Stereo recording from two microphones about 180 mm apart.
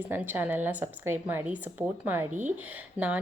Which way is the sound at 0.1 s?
10° right (ahead or behind).